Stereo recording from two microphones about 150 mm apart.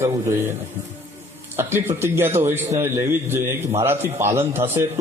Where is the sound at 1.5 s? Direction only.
15° right (ahead or behind).